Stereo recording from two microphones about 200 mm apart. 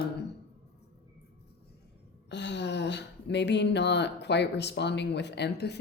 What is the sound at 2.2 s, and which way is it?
Speech, 60° left (ahead or behind).